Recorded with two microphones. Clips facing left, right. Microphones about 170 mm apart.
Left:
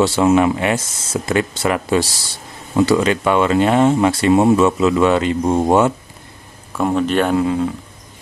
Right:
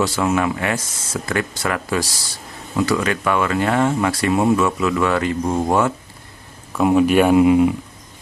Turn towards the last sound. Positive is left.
turn(degrees=-15)  # may be behind; listen again after turning